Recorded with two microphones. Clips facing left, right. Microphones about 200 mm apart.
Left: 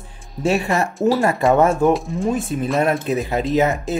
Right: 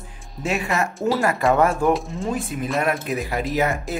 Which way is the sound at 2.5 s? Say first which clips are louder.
Left 3 dB; 35° left (ahead or behind).